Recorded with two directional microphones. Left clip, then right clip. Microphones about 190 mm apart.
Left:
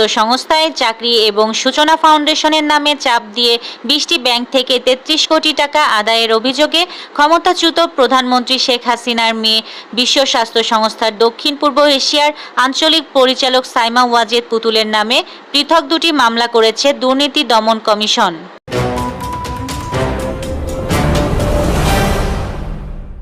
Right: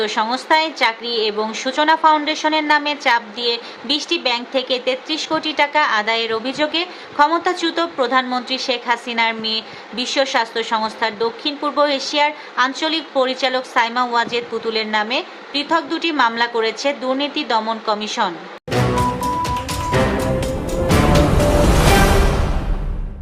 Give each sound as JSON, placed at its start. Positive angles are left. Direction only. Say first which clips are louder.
{"t": 0.0, "sound": "a woman's voice", "louder": "left 8 dB", "side_deg": 45}
{"t": 18.7, "sound": "music", "louder": "left 1 dB", "side_deg": 0}